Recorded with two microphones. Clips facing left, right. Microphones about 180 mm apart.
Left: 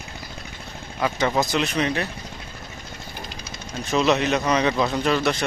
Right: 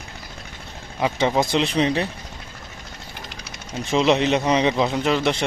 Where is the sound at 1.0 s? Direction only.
25° right (ahead or behind).